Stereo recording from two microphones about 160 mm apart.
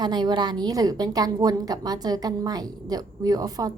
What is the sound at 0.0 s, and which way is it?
A woman's voice, 25° right (ahead or behind).